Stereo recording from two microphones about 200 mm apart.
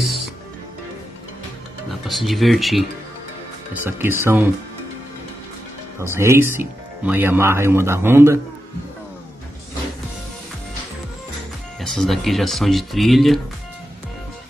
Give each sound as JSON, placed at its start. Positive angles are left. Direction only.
{"t": 1.9, "sound": "speech", "side_deg": 0}
{"t": 3.8, "sound": "speech", "side_deg": -10}
{"t": 6.1, "sound": "speech", "side_deg": -15}
{"t": 11.8, "sound": "speech", "side_deg": 0}